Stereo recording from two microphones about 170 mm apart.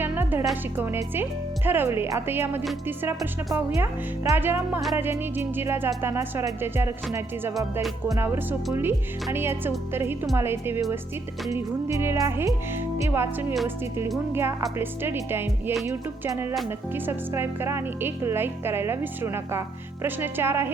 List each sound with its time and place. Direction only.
0.0 s music: 15° right (ahead or behind)
0.8 s speech: 15° right (ahead or behind)
7.5 s music: centre (ahead or behind)
8.2 s speech: 10° right (ahead or behind)
14.3 s speech: 15° right (ahead or behind)